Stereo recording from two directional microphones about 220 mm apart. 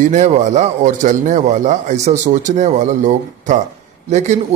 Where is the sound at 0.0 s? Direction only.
35° right (ahead or behind).